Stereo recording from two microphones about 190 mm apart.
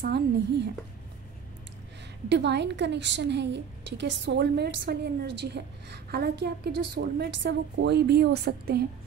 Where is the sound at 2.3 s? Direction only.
65° right (ahead or behind).